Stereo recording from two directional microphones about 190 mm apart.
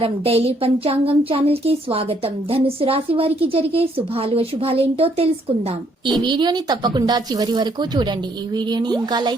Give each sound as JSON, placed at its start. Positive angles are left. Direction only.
{"t": 0.0, "sound": "a woman's voice", "side_deg": -30}